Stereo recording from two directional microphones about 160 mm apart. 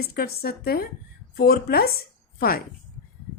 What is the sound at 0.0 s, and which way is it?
A woman's voice, 70° left (ahead or behind).